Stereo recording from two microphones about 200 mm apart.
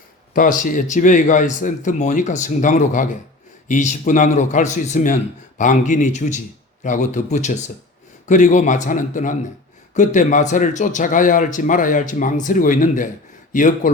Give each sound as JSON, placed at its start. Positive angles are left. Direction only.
{"t": 0.3, "sound": "a man's voice", "side_deg": 40}